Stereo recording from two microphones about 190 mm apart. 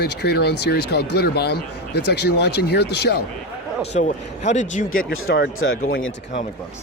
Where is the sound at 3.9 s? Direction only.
40° left (ahead or behind).